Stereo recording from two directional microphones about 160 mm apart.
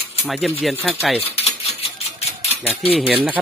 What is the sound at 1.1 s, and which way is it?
Speech, 40° left (ahead or behind).